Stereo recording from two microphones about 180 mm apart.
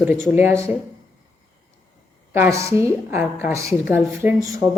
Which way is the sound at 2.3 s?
15° right (ahead or behind).